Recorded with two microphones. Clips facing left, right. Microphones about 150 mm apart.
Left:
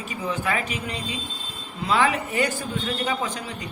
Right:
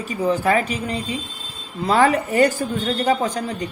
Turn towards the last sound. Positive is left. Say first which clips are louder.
# right 7 dB
turn(degrees=-40)  # may be behind; listen again after turning